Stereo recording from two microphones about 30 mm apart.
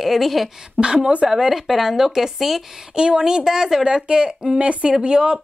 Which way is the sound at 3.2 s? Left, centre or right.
Right.